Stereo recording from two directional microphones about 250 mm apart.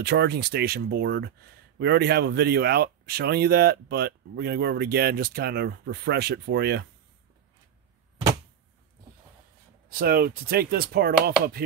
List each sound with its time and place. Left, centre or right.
0.0 s speech: right
9.8 s speech: right